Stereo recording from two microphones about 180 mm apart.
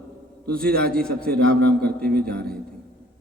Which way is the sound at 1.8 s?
60° right (ahead or behind).